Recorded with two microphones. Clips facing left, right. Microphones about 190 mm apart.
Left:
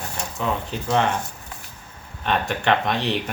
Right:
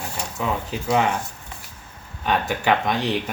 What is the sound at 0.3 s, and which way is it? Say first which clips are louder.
Speech: even; 5° right (ahead or behind).